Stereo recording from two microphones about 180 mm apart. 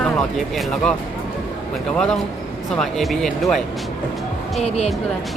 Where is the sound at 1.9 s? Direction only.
5° left (ahead or behind).